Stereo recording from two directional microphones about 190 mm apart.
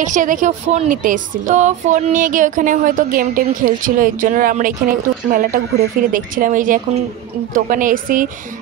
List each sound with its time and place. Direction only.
0.0 s a woman's voice: 45° right (ahead or behind)